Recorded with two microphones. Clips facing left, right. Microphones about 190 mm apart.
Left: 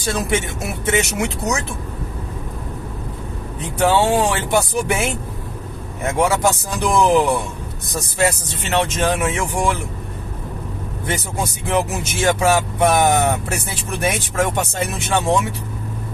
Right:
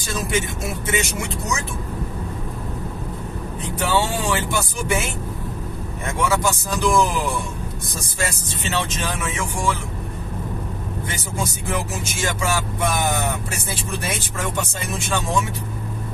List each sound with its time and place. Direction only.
0.1 s speech: 65° left (ahead or behind)
3.9 s speech: 60° left (ahead or behind)
6.1 s speech: 65° left (ahead or behind)
11.6 s speech: 65° left (ahead or behind)